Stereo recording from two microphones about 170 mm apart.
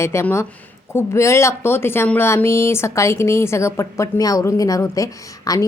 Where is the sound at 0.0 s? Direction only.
15° left (ahead or behind).